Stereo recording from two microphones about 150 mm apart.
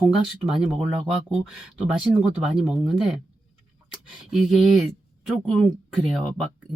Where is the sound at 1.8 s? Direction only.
5° right (ahead or behind).